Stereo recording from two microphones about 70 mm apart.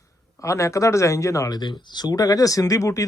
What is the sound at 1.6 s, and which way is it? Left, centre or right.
Speech, left.